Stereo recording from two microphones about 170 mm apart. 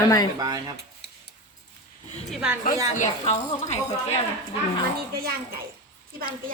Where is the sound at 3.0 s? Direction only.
40° left (ahead or behind).